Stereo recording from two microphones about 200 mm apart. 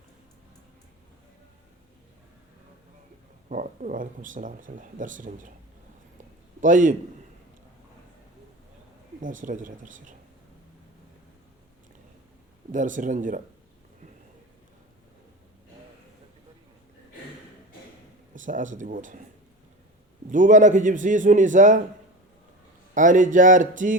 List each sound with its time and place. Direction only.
3.5 s speech: 40° right (ahead or behind)
6.6 s speech: 40° right (ahead or behind)
9.2 s speech: 40° right (ahead or behind)
12.7 s speech: 40° right (ahead or behind)
18.3 s speech: 40° right (ahead or behind)
20.3 s speech: 40° right (ahead or behind)
23.0 s speech: 40° right (ahead or behind)